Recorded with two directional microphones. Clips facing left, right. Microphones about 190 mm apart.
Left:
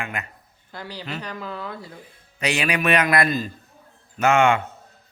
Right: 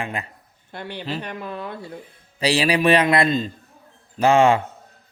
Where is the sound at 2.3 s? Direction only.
30° right (ahead or behind).